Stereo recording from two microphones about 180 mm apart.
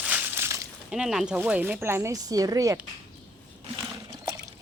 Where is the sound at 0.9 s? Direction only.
5° right (ahead or behind); by 2.8 s 20° right (ahead or behind).